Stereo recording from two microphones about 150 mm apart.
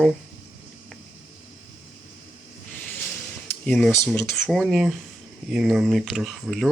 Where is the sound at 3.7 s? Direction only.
Centre (ahead or behind).